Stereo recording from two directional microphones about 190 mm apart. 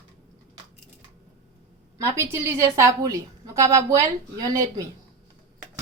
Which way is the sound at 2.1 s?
15° right (ahead or behind).